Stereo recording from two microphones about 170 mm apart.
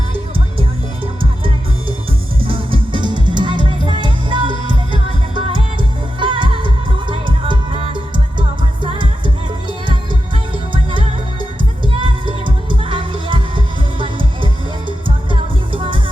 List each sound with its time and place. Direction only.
2.4 s music: 30° right (ahead or behind)